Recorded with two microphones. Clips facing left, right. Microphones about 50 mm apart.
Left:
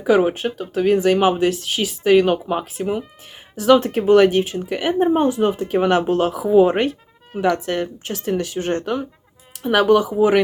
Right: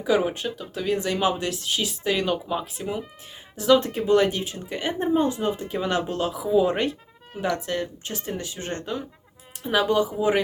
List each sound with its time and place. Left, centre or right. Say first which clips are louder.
0.0 s speech: left 6 dB; left
5.1 s speech: left 5 dB; left
8.8 s speech: left 7 dB; left
9.6 s speech: left 7 dB; left